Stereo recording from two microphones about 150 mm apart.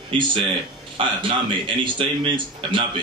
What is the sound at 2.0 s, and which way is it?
Speech, 35° right (ahead or behind).